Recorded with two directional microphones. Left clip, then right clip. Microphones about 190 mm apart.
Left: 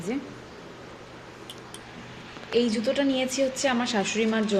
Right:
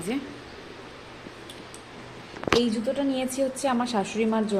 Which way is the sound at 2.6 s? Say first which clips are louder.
Left 2 dB; 5° left (ahead or behind).